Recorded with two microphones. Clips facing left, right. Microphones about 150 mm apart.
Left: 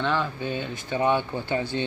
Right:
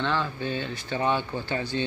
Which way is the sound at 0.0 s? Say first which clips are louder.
Left 1 dB; 15° left (ahead or behind).